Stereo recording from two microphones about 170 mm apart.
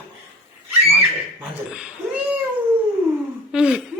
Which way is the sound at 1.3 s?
5° right (ahead or behind).